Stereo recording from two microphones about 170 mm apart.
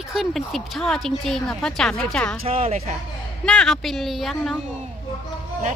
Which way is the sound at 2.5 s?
40° right (ahead or behind).